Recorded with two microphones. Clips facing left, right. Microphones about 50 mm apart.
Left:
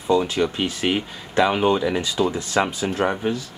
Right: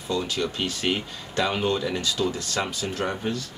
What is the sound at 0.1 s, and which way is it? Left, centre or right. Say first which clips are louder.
Speech: left 7 dB; centre.